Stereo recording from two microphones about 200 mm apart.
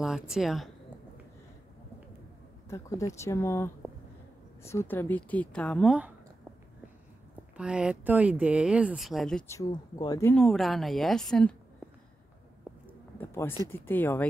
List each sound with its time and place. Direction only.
0.0 s speech: centre (ahead or behind)
3.2 s a woman's voice: 15° left (ahead or behind); by 6.1 s 5° right (ahead or behind)
7.5 s speech: 5° right (ahead or behind)
9.5 s a woman's voice: 20° left (ahead or behind)
10.3 s speech: centre (ahead or behind)
13.2 s a woman's voice: 10° left (ahead or behind)